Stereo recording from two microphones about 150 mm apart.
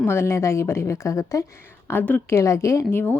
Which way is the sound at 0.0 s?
15° left (ahead or behind).